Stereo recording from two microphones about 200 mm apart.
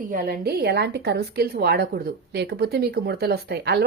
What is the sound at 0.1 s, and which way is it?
A woman's voice, 50° right (ahead or behind).